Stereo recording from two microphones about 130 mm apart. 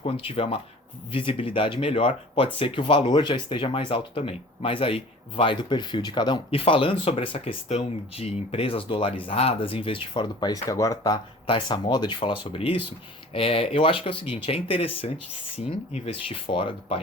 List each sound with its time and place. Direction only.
0.0 s speech: 50° left (ahead or behind)